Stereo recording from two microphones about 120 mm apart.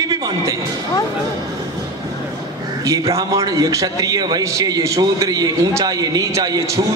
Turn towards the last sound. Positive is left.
turn(degrees=-30)  # may be behind; listen again after turning